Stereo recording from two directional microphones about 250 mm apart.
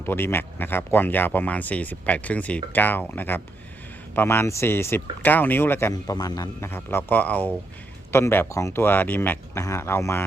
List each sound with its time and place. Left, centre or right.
0.0 s speech: centre